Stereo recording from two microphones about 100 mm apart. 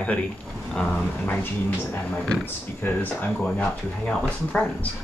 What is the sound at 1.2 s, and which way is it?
Speech, 20° left (ahead or behind).